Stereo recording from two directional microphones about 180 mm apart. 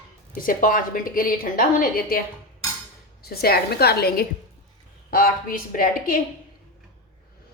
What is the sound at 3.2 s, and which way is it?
A woman's voice, 60° left (ahead or behind).